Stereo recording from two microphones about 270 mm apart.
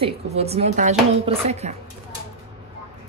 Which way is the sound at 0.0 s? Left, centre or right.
Right.